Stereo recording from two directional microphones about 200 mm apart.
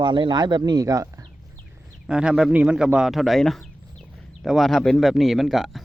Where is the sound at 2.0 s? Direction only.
5° right (ahead or behind).